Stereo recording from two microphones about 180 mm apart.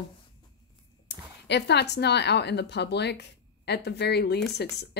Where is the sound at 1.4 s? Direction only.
70° left (ahead or behind).